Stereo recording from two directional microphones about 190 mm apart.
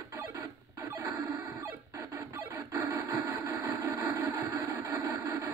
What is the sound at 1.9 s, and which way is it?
Cacophony, 20° right (ahead or behind).